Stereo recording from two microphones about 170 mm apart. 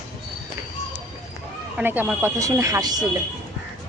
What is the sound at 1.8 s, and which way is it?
Speech, 10° right (ahead or behind).